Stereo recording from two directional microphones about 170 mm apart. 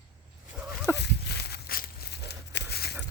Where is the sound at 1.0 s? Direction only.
75° left (ahead or behind).